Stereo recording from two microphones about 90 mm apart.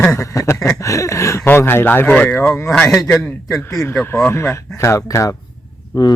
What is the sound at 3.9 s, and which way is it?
Speech, 25° left (ahead or behind).